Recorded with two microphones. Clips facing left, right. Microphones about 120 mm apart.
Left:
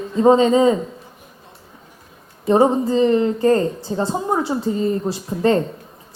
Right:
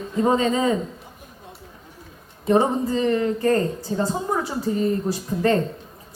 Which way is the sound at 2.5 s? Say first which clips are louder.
Left 4 dB; 25° left (ahead or behind).